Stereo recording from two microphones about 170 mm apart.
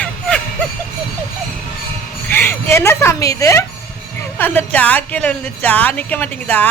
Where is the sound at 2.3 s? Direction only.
15° left (ahead or behind).